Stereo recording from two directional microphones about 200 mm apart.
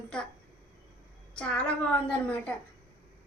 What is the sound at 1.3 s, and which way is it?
A woman's voice, 5° left (ahead or behind).